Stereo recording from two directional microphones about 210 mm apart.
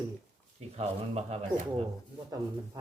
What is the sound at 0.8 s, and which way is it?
Speech, 30° right (ahead or behind).